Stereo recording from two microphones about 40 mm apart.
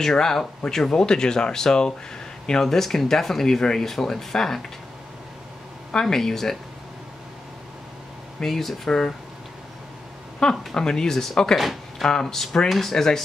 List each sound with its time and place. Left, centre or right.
0.0 s speech: centre
5.9 s speech: centre
8.4 s speech: centre
10.7 s speech: centre
11.5 s speech: centre
12.0 s speech: centre
12.6 s speech: centre
12.9 s speech: centre